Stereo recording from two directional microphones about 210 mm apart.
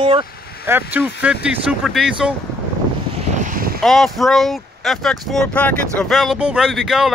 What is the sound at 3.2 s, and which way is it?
Boat, 35° right (ahead or behind).